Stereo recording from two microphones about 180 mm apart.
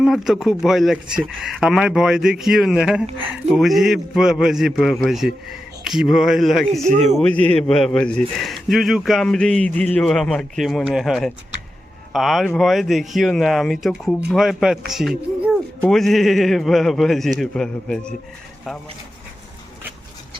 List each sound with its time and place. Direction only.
0.0 s a man's voice: centre (ahead or behind)
6.8 s a man's voice: 40° right (ahead or behind)
7.2 s a man's voice: 5° left (ahead or behind)